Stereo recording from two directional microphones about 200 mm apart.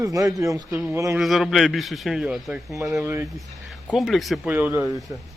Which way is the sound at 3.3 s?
Centre (ahead or behind).